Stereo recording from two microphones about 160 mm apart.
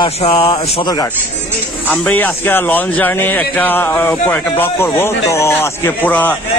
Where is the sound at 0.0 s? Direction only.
35° left (ahead or behind).